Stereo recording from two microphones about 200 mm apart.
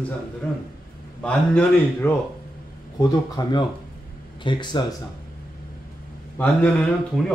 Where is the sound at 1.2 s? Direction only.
5° left (ahead or behind).